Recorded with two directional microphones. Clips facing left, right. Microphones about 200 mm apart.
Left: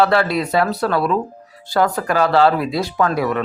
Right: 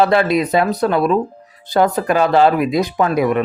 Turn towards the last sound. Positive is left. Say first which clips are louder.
# right 3 dB
turn(degrees=-15)  # may be behind; listen again after turning